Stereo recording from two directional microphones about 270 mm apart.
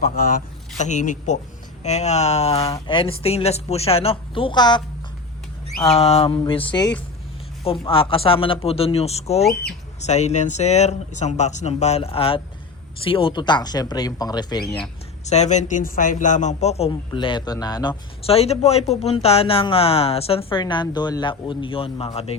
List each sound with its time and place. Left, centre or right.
0.8 s speech: left
14.8 s speech: left